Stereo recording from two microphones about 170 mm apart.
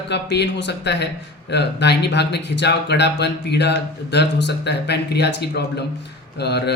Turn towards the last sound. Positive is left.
turn(degrees=75)  # may be behind; listen again after turning